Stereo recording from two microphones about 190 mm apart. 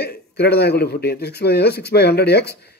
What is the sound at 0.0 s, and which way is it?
Speech, 55° left (ahead or behind).